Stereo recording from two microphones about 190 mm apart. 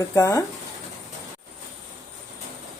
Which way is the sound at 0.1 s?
15° left (ahead or behind).